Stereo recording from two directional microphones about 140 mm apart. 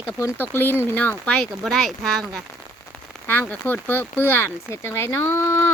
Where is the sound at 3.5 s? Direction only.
15° left (ahead or behind).